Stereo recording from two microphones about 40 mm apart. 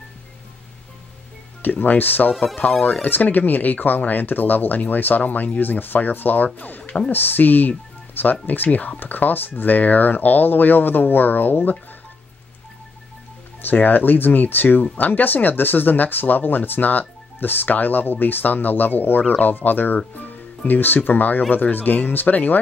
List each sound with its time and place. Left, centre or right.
1.6 s speech: left
13.6 s speech: left